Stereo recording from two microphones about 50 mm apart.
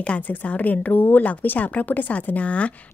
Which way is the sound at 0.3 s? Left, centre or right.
Left.